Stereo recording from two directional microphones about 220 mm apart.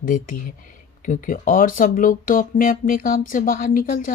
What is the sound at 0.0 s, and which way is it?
Speech, 35° left (ahead or behind).